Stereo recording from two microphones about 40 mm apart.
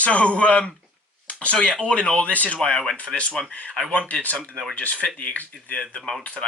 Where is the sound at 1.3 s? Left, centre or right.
Left.